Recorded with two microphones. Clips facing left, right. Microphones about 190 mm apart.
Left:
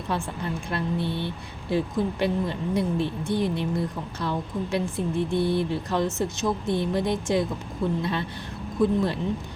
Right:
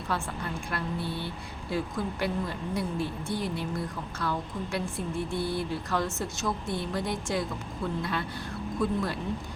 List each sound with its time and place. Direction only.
0.1 s speech: 20° left (ahead or behind)